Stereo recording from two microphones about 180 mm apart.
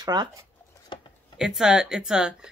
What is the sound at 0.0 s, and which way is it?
Speech, 25° right (ahead or behind).